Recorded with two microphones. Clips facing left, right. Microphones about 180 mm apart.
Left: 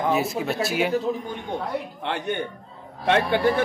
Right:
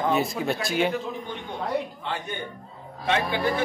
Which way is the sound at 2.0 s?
65° left (ahead or behind).